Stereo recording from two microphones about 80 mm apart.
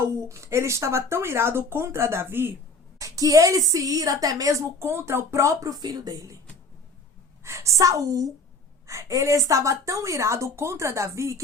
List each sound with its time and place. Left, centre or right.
0.0 s a woman's voice: right
3.0 s a woman's voice: right
7.4 s a woman's voice: right